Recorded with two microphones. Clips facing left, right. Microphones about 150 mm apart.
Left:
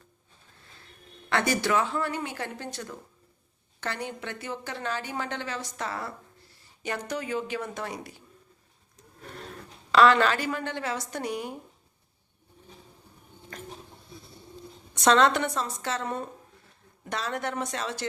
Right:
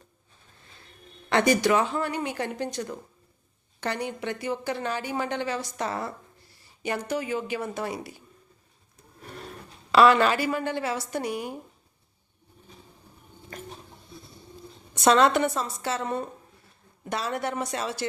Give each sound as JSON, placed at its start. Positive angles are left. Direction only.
{"t": 1.3, "sound": "a woman's voice", "side_deg": -20}
{"t": 6.8, "sound": "a woman's voice", "side_deg": -10}
{"t": 9.9, "sound": "a woman's voice", "side_deg": -10}
{"t": 13.5, "sound": "a sound", "side_deg": -5}
{"t": 15.0, "sound": "a woman's voice", "side_deg": -10}